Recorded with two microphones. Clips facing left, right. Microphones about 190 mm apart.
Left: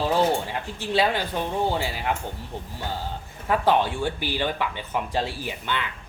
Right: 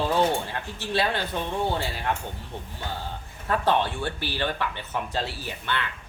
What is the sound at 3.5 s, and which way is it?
Speech, 10° left (ahead or behind).